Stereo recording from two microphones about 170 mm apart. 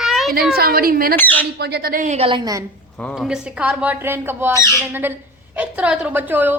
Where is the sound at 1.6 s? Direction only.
70° right (ahead or behind); by 2.3 s 45° right (ahead or behind).